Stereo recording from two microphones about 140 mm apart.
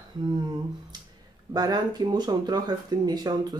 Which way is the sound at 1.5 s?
30° right (ahead or behind).